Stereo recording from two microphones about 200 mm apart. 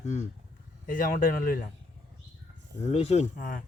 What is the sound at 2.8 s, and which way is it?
Speech, 30° left (ahead or behind).